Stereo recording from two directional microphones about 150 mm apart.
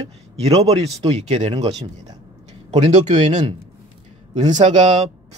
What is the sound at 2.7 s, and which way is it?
Speech, 50° right (ahead or behind).